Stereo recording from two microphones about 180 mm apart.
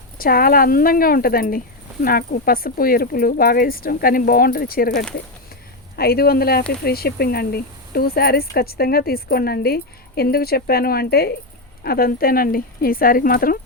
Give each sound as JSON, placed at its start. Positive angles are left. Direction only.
{"t": 0.2, "sound": "speech", "side_deg": 55}